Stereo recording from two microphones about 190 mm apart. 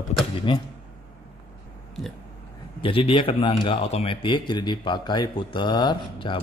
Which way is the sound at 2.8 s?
30° left (ahead or behind).